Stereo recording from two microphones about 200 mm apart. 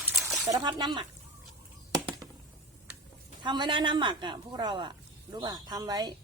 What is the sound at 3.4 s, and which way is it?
A woman's voice, 25° right (ahead or behind).